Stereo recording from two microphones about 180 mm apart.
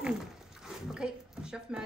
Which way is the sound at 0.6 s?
5° right (ahead or behind).